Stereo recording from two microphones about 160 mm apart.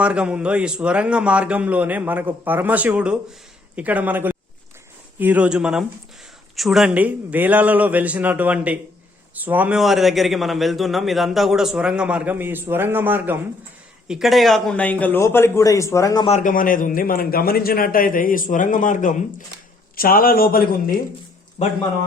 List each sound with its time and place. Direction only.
0.0 s a man's voice: 5° right (ahead or behind)
14.1 s a man's voice: centre (ahead or behind); by 16.2 s 20° left (ahead or behind)
16.4 s a man's voice: 60° left (ahead or behind)
20.0 s speech: 65° left (ahead or behind)
21.6 s a man's voice: 45° left (ahead or behind)